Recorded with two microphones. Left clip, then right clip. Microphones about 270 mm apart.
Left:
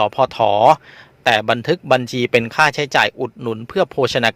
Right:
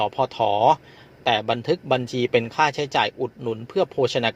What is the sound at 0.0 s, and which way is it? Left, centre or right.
A man's voice, left.